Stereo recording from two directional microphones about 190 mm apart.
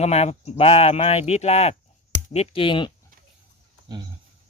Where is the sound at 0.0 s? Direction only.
35° left (ahead or behind).